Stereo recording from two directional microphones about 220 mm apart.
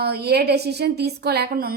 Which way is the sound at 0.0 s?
45° right (ahead or behind).